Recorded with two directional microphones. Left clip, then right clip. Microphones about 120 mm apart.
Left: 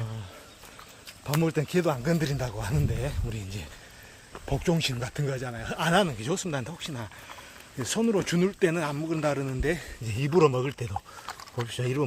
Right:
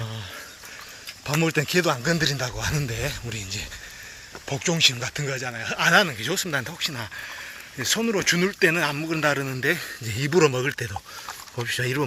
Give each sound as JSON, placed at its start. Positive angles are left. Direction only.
{"t": 1.3, "sound": "speech", "side_deg": -5}
{"t": 2.0, "sound": "a man's voice", "side_deg": 20}
{"t": 3.3, "sound": "speech", "side_deg": 30}
{"t": 6.7, "sound": "a man's voice", "side_deg": 10}
{"t": 7.8, "sound": "speech", "side_deg": 35}
{"t": 8.4, "sound": "a man's voice", "side_deg": 5}